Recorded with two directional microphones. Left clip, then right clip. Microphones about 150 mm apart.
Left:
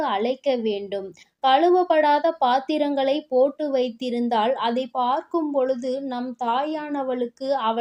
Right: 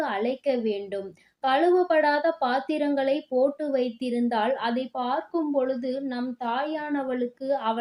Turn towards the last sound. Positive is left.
turn(degrees=35)  # may be behind; listen again after turning